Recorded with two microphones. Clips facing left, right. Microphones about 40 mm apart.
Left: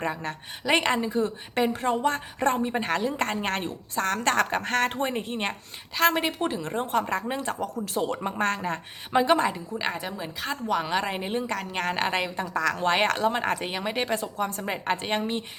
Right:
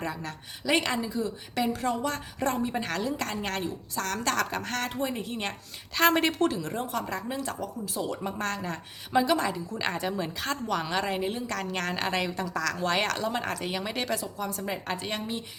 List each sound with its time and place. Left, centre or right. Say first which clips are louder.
0.0 s a woman's voice: left 4 dB; left
5.9 s a woman's voice: even; centre
6.6 s a woman's voice: left 5 dB; left
9.7 s a woman's voice: even; centre; by 14.2 s left
14.2 s a woman's voice: left 4 dB; left